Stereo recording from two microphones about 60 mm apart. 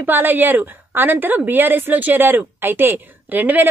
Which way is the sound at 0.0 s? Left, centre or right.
Right.